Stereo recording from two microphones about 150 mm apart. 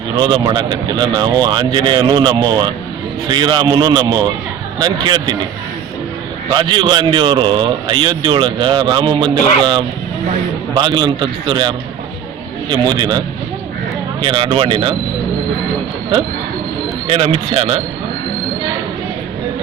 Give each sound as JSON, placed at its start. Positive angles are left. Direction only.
{"t": 0.2, "sound": "speech", "side_deg": -30}
{"t": 6.5, "sound": "speech", "side_deg": -30}
{"t": 10.8, "sound": "speech", "side_deg": -30}
{"t": 12.7, "sound": "speech", "side_deg": -30}
{"t": 17.1, "sound": "speech", "side_deg": -40}